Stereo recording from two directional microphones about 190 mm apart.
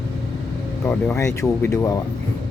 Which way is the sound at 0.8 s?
10° left (ahead or behind).